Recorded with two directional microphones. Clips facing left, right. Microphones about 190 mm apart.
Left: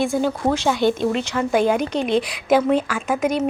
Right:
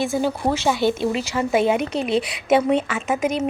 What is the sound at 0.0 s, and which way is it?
A woman's voice, 5° right (ahead or behind).